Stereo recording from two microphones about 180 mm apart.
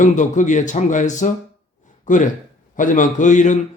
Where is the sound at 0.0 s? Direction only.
45° left (ahead or behind).